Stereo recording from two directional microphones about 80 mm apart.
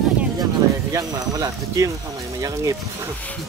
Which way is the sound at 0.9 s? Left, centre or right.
Right.